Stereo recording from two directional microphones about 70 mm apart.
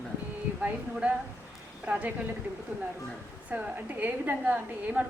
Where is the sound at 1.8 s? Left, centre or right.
Right.